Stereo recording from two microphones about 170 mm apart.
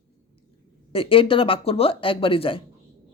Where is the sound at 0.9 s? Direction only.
30° left (ahead or behind).